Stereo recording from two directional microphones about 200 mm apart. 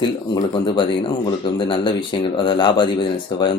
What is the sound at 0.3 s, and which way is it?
Speech, 25° left (ahead or behind).